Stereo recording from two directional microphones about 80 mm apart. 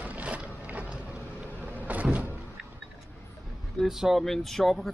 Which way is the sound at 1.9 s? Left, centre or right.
Centre.